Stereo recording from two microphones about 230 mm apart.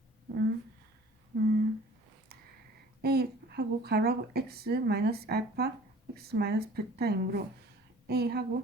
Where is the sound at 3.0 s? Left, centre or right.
Right.